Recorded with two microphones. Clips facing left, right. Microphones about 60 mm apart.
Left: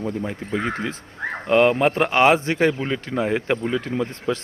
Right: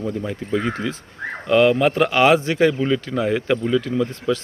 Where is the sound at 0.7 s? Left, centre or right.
Left.